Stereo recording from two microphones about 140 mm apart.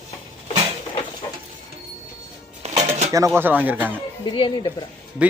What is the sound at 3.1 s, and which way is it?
Speech, 20° right (ahead or behind).